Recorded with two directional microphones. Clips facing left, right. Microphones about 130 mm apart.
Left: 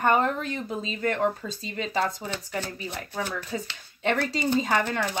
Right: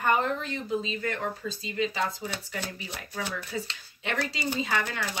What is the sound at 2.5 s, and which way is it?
Speech, 40° left (ahead or behind).